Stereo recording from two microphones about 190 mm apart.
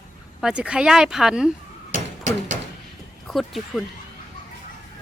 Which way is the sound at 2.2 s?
40° right (ahead or behind).